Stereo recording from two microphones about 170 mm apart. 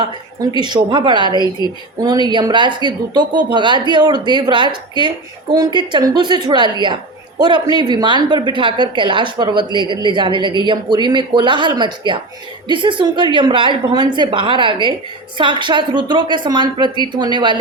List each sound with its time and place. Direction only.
0.0 s a woman's voice: 25° right (ahead or behind)